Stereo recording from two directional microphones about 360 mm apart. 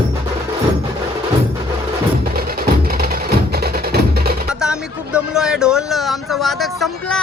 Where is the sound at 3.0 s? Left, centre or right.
Right.